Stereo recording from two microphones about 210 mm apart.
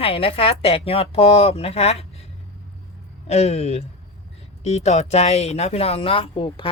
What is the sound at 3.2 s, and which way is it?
A woman's voice, 30° left (ahead or behind).